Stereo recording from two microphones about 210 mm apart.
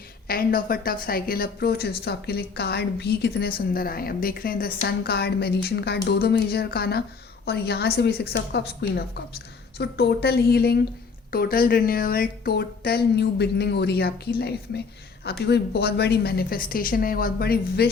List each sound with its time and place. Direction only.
0.3 s a woman's voice: 45° left (ahead or behind)